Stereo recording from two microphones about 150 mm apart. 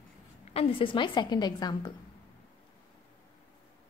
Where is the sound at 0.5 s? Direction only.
40° left (ahead or behind).